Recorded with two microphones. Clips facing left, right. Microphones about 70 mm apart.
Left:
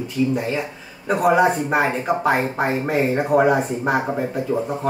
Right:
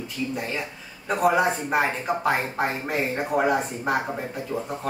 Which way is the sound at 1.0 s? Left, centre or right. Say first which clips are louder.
Left 5 dB; centre.